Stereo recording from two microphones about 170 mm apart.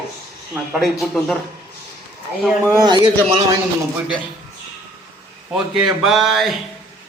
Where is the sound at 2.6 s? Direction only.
25° right (ahead or behind).